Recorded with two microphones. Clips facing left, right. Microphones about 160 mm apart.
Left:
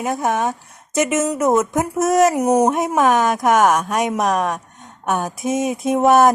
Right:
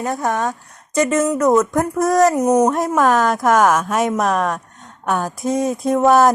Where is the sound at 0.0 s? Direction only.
20° left (ahead or behind).